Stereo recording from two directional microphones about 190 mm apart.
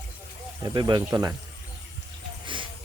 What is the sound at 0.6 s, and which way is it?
Speech, 25° right (ahead or behind).